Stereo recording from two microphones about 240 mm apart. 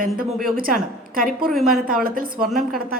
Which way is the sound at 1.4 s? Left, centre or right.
Centre.